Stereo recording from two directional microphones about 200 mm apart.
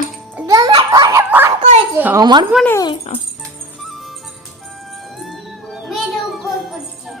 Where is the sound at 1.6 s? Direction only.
35° right (ahead or behind).